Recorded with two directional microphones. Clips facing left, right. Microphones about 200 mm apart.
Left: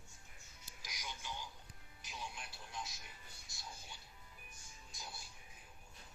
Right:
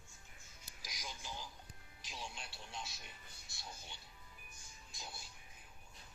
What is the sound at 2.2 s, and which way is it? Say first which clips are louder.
Music: left 1 dB; 30° right (ahead or behind).